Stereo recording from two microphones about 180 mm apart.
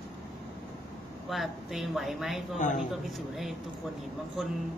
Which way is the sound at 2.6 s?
45° left (ahead or behind).